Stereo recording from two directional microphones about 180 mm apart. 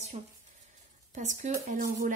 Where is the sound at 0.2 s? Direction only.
35° right (ahead or behind).